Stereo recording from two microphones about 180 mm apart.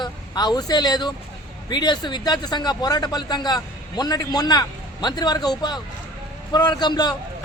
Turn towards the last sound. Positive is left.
turn(degrees=25)  # may be behind; listen again after turning